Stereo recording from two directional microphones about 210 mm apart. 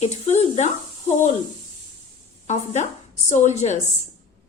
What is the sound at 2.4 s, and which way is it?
A woman's voice, 35° left (ahead or behind).